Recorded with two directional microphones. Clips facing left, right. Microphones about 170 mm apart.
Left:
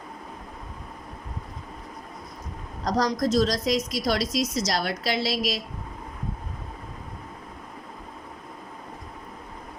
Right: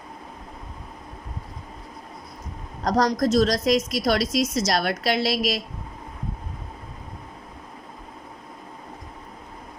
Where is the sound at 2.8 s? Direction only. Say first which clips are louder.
Right 3 dB; 55° right (ahead or behind).